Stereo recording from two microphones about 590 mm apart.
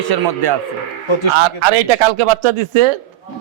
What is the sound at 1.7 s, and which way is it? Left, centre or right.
Speech, right.